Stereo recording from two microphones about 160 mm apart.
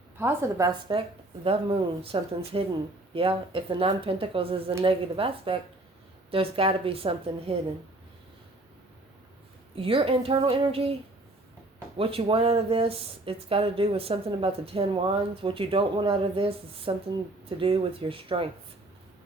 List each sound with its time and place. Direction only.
0.2 s a woman's voice: 15° right (ahead or behind); by 7.5 s 35° right (ahead or behind)
9.7 s speech: 35° right (ahead or behind)
11.9 s speech: 35° right (ahead or behind)